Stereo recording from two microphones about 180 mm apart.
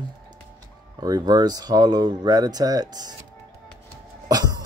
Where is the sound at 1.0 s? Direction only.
20° right (ahead or behind).